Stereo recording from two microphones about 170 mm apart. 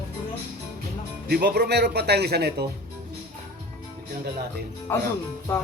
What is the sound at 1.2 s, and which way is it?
Speech, 70° right (ahead or behind).